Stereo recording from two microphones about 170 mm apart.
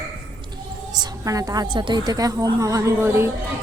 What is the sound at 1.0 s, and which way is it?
A woman's voice, 20° right (ahead or behind).